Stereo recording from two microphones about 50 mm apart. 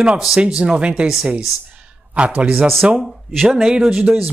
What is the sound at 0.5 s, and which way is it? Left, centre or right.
Speech, centre.